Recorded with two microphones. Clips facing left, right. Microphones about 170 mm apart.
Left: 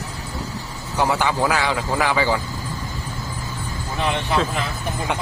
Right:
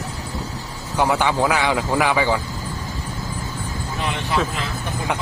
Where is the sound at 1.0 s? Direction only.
15° right (ahead or behind).